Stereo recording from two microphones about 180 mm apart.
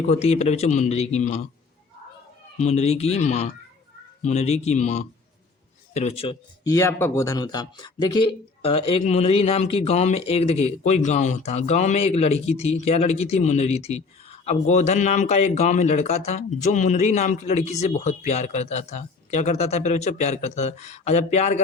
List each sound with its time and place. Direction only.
0.0 s speech: 35° left (ahead or behind)
2.6 s speech: 40° left (ahead or behind)
6.7 s speech: 15° left (ahead or behind); by 21.6 s 40° left (ahead or behind)